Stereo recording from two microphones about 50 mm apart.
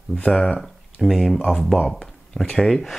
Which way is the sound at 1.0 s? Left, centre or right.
Centre.